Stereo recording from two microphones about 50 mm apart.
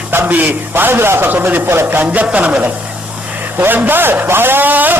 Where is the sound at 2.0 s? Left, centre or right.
Right.